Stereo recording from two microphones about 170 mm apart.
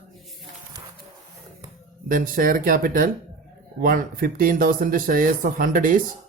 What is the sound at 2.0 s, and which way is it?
Speech, 55° right (ahead or behind).